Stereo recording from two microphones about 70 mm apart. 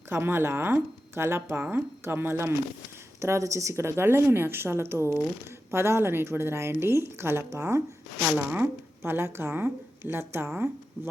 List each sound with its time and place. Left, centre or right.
0.1 s a woman's voice: right
8.4 s a woman's voice: right